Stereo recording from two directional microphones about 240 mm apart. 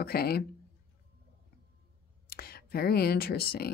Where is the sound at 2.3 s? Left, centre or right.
Left.